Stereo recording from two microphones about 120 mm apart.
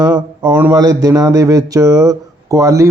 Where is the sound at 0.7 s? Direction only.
30° right (ahead or behind).